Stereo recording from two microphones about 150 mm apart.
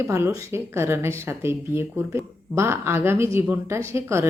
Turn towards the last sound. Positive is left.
turn(degrees=-20)  # may be behind; listen again after turning